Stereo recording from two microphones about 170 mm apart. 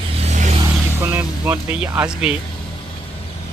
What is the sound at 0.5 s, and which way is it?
Speech, 15° right (ahead or behind).